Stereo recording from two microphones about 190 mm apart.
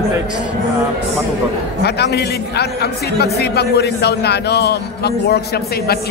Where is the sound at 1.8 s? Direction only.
60° left (ahead or behind).